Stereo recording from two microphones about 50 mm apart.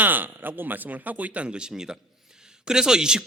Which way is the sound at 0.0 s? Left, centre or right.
Right.